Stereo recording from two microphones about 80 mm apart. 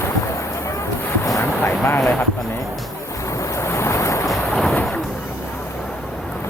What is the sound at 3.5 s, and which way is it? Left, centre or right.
Waves, left.